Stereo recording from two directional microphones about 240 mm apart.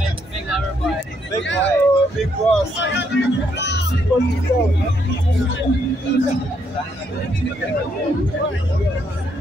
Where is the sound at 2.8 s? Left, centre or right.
Left.